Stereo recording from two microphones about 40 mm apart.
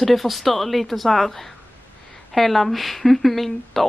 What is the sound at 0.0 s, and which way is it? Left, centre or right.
Speech, centre.